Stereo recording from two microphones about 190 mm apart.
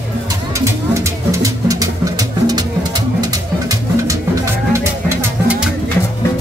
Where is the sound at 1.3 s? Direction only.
15° right (ahead or behind).